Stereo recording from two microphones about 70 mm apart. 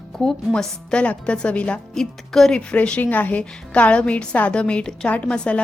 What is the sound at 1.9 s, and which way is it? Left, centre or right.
A woman's voice, centre.